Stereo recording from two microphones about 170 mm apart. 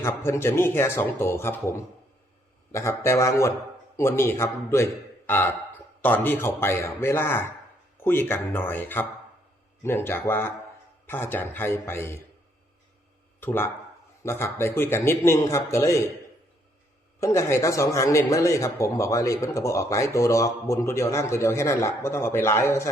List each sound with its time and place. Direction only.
0.0 s a man's voice: 15° left (ahead or behind)
2.7 s a man's voice: 15° left (ahead or behind)
13.4 s a man's voice: 15° left (ahead or behind)
17.2 s a man's voice: 15° left (ahead or behind)